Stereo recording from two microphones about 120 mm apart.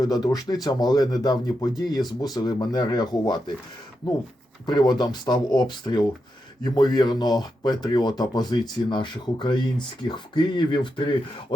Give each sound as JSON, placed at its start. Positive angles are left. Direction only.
{"t": 0.0, "sound": "speech", "side_deg": 35}